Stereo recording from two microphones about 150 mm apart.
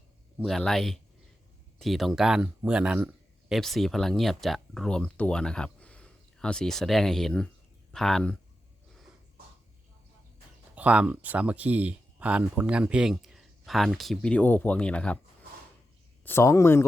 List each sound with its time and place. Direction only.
0.3 s speech: centre (ahead or behind)
10.8 s speech: 10° right (ahead or behind); by 15.2 s 5° left (ahead or behind)
16.2 s speech: 15° left (ahead or behind)